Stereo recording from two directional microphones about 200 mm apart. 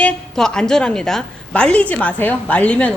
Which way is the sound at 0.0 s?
5° left (ahead or behind).